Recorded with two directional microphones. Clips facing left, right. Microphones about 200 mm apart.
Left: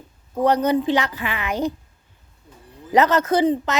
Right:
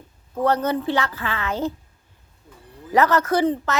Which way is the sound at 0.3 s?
15° left (ahead or behind).